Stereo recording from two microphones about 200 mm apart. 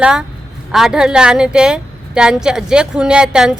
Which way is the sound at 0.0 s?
5° right (ahead or behind).